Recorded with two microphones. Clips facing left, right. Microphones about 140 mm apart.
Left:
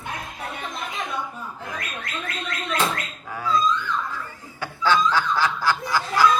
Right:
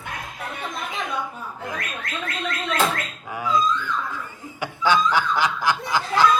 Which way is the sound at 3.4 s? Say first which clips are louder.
Right 1 dB; 15° right (ahead or behind).